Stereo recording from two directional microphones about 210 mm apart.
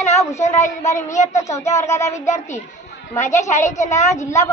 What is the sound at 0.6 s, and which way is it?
Child singing, 35° left (ahead or behind).